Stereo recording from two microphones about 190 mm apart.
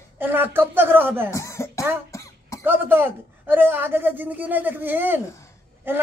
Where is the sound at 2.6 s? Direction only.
10° right (ahead or behind).